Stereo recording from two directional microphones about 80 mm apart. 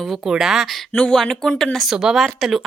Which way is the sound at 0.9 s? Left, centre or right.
Centre.